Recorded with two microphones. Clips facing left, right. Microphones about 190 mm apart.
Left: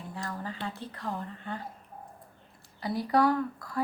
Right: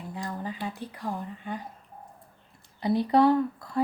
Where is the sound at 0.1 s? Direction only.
20° right (ahead or behind).